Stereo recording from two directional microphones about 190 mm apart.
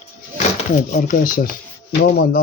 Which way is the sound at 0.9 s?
45° left (ahead or behind).